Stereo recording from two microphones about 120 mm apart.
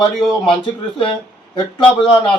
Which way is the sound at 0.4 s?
45° left (ahead or behind).